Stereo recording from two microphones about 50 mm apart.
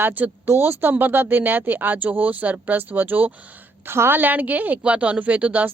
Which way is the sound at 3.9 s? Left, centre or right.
Right.